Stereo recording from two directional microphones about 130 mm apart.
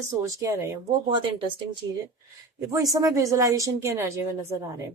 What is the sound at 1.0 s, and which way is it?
Speech, 40° right (ahead or behind).